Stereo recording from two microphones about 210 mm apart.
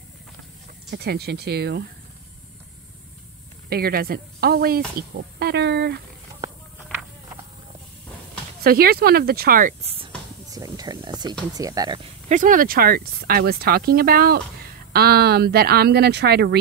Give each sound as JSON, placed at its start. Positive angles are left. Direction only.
{"t": 0.8, "sound": "speech", "side_deg": -50}
{"t": 3.6, "sound": "speech", "side_deg": -45}
{"t": 8.6, "sound": "speech", "side_deg": -45}
{"t": 9.9, "sound": "a sound", "side_deg": -20}
{"t": 11.5, "sound": "speech", "side_deg": -15}
{"t": 12.3, "sound": "speech", "side_deg": -40}